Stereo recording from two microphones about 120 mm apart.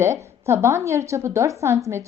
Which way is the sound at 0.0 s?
25° right (ahead or behind).